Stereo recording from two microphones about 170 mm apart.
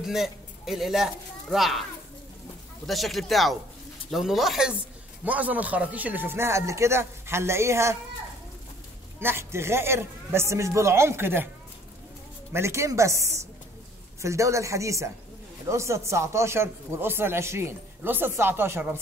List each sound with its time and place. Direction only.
0.0 s speech: centre (ahead or behind)
2.9 s a man's voice: centre (ahead or behind); by 8.0 s 15° right (ahead or behind)
9.2 s a man's voice: 15° right (ahead or behind)
12.5 s a man's voice: 15° right (ahead or behind)